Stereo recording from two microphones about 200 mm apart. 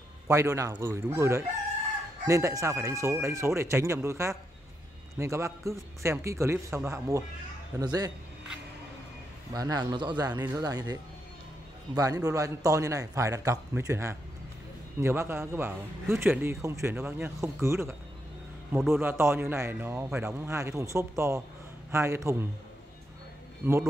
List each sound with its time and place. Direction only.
0.3 s a man's voice: 15° right (ahead or behind)
9.5 s speech: 20° right (ahead or behind)
10.3 s a man's voice: 10° right (ahead or behind)
23.6 s a man's voice: 10° right (ahead or behind)